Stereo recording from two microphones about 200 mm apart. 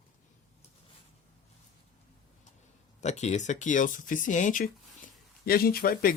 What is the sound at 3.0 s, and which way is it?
Speech, 35° left (ahead or behind).